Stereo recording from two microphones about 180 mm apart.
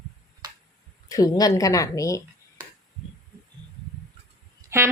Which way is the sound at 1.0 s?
20° left (ahead or behind).